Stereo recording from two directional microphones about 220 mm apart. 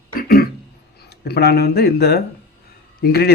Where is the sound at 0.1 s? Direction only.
40° left (ahead or behind).